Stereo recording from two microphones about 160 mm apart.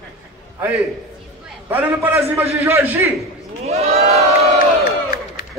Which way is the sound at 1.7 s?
10° right (ahead or behind).